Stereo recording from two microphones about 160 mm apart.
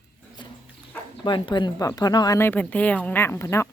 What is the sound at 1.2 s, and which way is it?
A woman's voice, 30° left (ahead or behind).